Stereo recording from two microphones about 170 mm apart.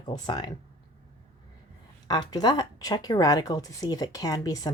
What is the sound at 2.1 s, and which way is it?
Speech, 25° left (ahead or behind).